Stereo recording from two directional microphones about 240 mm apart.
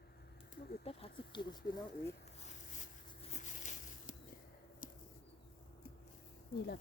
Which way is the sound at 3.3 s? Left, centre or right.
Left.